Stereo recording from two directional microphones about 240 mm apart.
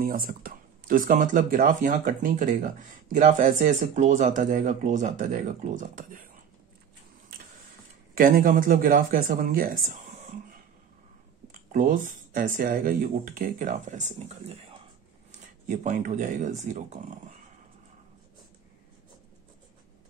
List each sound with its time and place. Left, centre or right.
0.0 s speech: right
7.3 s printer: right
8.1 s speech: right
11.7 s speech: right
15.4 s speech: right